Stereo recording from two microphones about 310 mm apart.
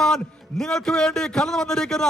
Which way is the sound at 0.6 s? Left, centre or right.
Centre.